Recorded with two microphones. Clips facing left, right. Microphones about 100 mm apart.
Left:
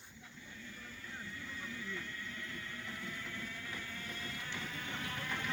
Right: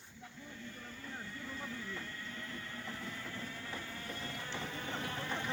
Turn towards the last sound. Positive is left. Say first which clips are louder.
# right 2 dB
turn(degrees=-25)  # may be behind; listen again after turning